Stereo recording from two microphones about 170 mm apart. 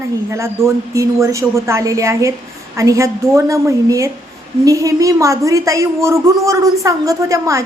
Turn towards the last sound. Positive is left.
turn(degrees=-15)  # may be behind; listen again after turning